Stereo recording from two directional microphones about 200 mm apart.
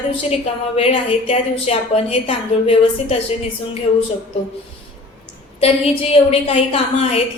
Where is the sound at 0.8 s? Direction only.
30° left (ahead or behind).